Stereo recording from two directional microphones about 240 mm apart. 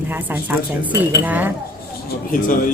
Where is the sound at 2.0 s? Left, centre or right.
Left.